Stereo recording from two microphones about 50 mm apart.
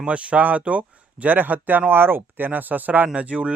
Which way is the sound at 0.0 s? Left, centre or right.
Right.